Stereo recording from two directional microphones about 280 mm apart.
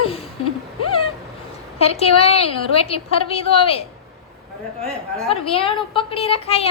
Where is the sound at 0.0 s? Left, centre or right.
Left.